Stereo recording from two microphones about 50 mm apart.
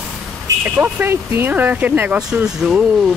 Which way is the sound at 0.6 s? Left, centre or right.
Right.